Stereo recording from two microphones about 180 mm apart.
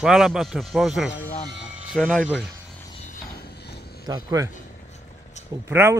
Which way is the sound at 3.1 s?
60° left (ahead or behind).